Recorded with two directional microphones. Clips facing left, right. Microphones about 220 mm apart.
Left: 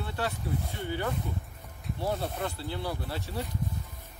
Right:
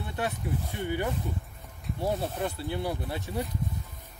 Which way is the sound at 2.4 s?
15° right (ahead or behind).